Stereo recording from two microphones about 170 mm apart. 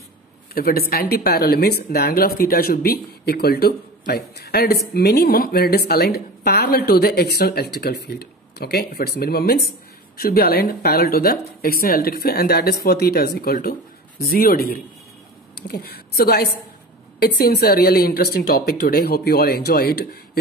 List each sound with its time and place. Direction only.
0.6 s speech: 60° left (ahead or behind)